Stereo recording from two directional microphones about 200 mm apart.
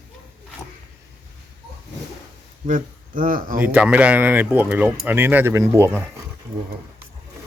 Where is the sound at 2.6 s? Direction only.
40° right (ahead or behind).